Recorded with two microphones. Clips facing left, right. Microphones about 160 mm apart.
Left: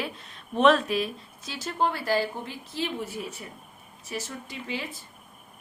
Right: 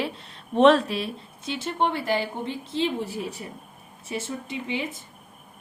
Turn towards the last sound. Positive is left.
turn(degrees=-20)  # may be behind; listen again after turning